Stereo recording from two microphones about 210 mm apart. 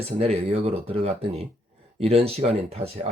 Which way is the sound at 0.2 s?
30° right (ahead or behind).